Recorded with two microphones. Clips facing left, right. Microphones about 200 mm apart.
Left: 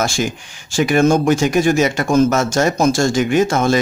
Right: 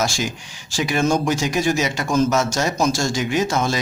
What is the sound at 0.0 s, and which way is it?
Speech, 50° left (ahead or behind).